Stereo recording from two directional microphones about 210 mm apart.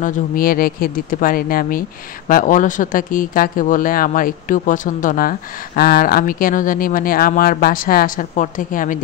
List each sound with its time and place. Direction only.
0.0 s speech: 40° left (ahead or behind)